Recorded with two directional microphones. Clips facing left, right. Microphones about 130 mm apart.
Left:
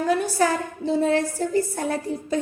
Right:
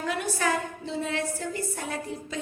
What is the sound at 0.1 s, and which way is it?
A woman's voice, 35° left (ahead or behind).